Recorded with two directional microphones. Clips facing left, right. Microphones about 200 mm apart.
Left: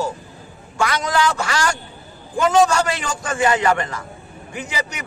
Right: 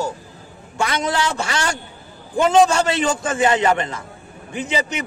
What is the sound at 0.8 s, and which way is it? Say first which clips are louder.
A man's voice: left 1 dB; 25° right (ahead or behind).